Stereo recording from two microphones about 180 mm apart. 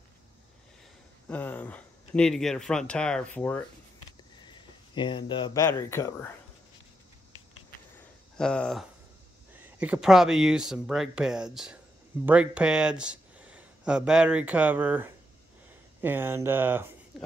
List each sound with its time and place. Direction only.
1.3 s speech: 10° left (ahead or behind)
4.4 s speech: 25° left (ahead or behind)
8.4 s speech: 5° left (ahead or behind); by 16.9 s 10° right (ahead or behind)